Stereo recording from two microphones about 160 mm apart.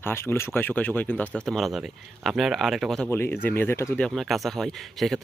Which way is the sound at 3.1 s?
15° left (ahead or behind).